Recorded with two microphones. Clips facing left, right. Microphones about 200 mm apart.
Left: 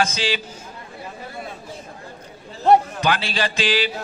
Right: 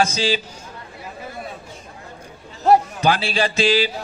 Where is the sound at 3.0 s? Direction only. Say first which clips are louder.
Right 3 dB; 30° right (ahead or behind).